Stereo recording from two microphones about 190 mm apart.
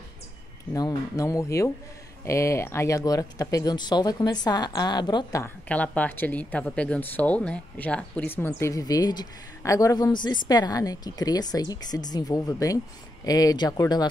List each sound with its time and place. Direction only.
0.7 s speech: 20° left (ahead or behind)
5.7 s speech: 10° left (ahead or behind)